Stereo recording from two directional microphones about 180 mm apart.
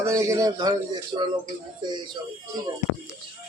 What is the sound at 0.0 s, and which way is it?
A man's voice, 15° right (ahead or behind).